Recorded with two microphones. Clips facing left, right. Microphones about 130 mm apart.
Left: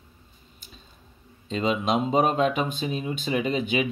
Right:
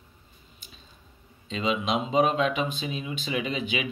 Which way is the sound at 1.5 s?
45° left (ahead or behind).